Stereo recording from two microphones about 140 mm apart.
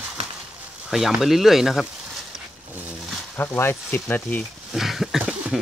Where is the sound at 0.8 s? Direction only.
Centre (ahead or behind).